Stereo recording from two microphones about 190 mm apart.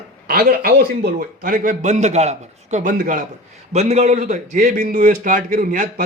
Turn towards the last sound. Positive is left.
turn(degrees=-45)  # may be behind; listen again after turning